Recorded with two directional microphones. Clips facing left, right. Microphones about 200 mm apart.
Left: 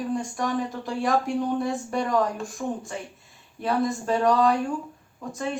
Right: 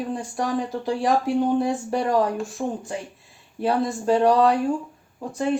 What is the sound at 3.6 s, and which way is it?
Speech, 30° right (ahead or behind).